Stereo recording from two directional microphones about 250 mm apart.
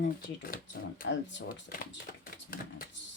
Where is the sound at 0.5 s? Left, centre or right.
Left.